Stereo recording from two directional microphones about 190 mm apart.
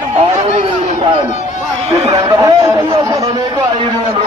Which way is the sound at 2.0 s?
20° right (ahead or behind).